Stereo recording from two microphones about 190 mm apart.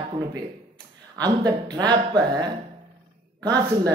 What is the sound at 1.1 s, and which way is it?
A man's voice, 20° right (ahead or behind).